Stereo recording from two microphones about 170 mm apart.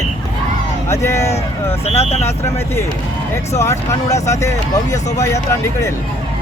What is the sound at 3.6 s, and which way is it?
Speech, 15° left (ahead or behind).